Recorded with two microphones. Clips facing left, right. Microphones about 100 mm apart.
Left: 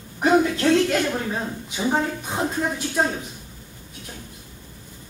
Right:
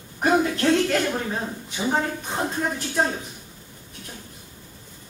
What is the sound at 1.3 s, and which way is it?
Speech, 10° left (ahead or behind).